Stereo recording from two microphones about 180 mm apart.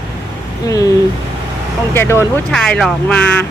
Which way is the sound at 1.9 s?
15° left (ahead or behind).